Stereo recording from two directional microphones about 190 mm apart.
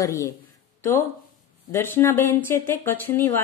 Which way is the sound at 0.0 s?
15° left (ahead or behind).